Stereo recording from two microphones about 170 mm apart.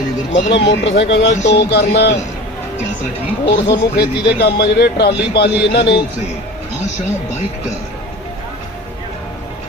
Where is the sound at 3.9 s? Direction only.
75° left (ahead or behind).